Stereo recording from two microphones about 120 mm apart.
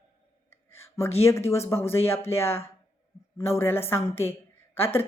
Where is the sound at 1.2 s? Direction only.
25° left (ahead or behind).